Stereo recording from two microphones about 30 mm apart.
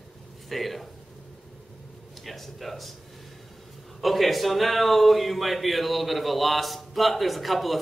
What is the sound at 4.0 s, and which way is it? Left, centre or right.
A man's voice, centre.